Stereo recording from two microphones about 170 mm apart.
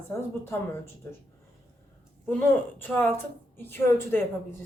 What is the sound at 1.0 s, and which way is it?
Speech, 15° left (ahead or behind).